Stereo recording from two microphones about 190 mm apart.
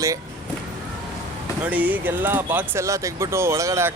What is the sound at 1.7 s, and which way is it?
Speech, 10° right (ahead or behind).